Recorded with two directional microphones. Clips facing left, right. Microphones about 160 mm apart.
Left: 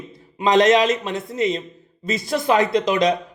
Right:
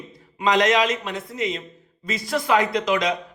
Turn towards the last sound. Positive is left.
turn(degrees=25)  # may be behind; listen again after turning